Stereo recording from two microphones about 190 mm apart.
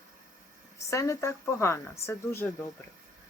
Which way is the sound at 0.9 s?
15° left (ahead or behind).